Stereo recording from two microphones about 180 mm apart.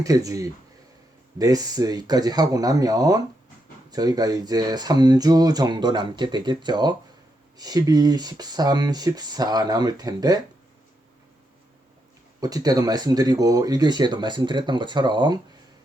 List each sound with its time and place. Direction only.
0.0 s speech: 20° right (ahead or behind)
12.4 s speech: 20° right (ahead or behind)